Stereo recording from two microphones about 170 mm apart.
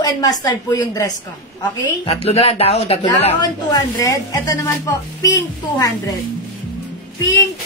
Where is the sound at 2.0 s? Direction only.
35° left (ahead or behind).